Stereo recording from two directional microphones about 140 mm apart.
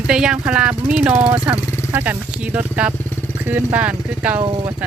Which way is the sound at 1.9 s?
10° right (ahead or behind).